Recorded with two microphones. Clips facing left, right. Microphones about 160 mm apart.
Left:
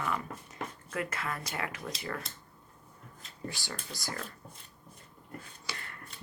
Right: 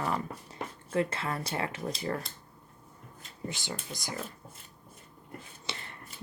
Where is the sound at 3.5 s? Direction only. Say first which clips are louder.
Right 3 dB; 20° right (ahead or behind).